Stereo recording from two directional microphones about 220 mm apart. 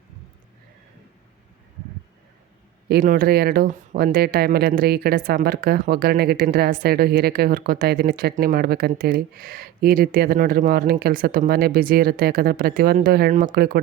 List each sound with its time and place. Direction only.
2.9 s speech: 40° right (ahead or behind)